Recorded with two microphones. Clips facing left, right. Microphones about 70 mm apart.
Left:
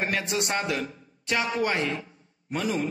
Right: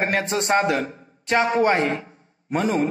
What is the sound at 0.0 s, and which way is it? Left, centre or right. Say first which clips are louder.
A man's voice: right 5 dB; right.